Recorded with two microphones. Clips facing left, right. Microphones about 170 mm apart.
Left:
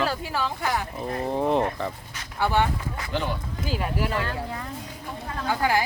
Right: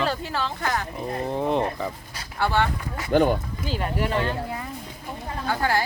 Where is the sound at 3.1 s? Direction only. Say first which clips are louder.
Right 10 dB; 50° right (ahead or behind).